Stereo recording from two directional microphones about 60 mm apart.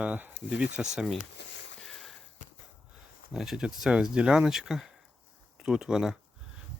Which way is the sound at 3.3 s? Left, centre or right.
Centre.